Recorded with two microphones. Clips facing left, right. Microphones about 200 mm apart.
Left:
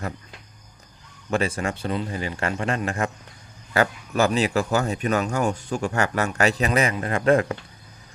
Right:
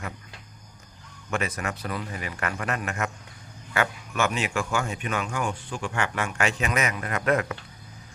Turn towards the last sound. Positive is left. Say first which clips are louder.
# left 5 dB
turn(degrees=30)  # may be behind; listen again after turning